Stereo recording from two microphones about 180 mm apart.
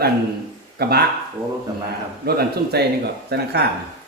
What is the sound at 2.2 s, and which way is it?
A man's voice, 60° right (ahead or behind).